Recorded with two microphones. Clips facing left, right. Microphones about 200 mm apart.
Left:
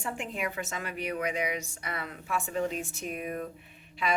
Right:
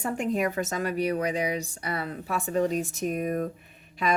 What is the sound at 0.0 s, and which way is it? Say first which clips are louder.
Speech: right 8 dB; 40° right (ahead or behind).